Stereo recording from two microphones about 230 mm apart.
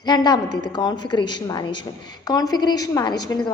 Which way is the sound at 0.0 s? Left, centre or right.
Centre.